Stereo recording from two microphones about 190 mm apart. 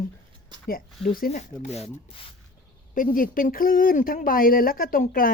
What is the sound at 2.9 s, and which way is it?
Speech, 45° left (ahead or behind).